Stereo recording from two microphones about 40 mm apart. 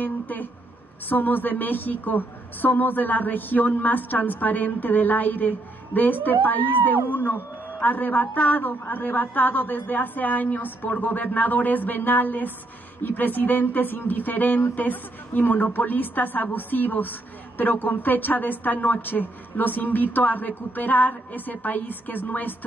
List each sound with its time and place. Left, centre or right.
0.0 s a woman's voice: left